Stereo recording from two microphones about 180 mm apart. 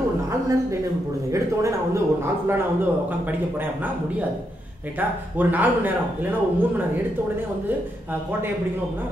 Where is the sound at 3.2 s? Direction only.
10° right (ahead or behind).